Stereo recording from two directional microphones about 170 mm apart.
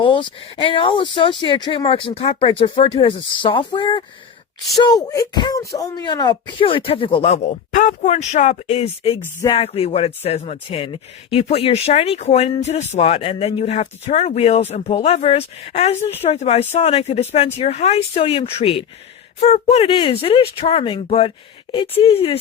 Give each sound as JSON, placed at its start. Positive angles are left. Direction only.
{"t": 0.0, "sound": "speech", "side_deg": 30}